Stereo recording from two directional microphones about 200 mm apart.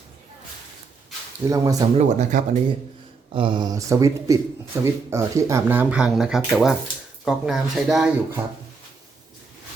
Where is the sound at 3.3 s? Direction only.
25° right (ahead or behind); by 8.1 s centre (ahead or behind).